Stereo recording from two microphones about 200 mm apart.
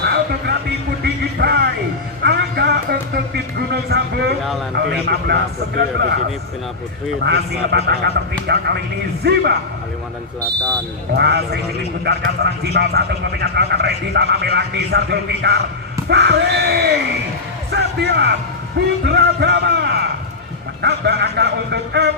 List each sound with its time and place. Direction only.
0.0 s music: 55° right (ahead or behind)
2.2 s a sound: 55° right (ahead or behind)
3.8 s a man's voice: 55° right (ahead or behind)
7.2 s a man's voice: 55° right (ahead or behind)
11.2 s a man's voice: 55° right (ahead or behind)
16.0 s yell: 55° right (ahead or behind)
17.7 s a man's voice: 50° right (ahead or behind)